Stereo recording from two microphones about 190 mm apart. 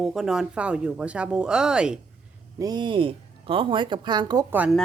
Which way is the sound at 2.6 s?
20° right (ahead or behind).